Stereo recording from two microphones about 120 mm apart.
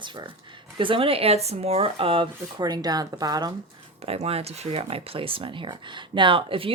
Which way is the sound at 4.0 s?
55° right (ahead or behind).